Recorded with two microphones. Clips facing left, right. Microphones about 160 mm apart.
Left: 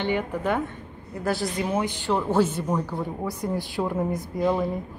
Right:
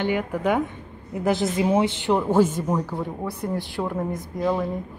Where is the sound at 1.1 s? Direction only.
20° right (ahead or behind); by 4.6 s 5° left (ahead or behind).